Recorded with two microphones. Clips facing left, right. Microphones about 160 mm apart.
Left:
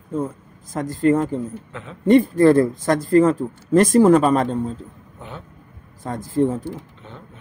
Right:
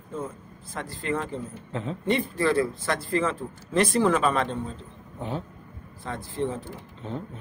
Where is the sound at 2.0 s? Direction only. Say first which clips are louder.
Left 12 dB; 45° left (ahead or behind).